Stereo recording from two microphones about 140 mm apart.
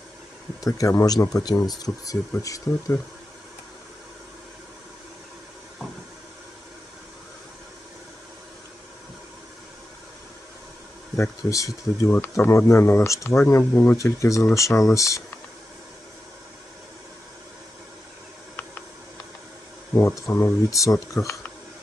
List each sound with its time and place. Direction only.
0.7 s speech: 25° left (ahead or behind)
11.1 s speech: 20° left (ahead or behind)
19.9 s speech: 15° left (ahead or behind)